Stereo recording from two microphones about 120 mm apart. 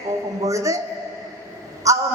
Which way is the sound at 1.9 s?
25° right (ahead or behind).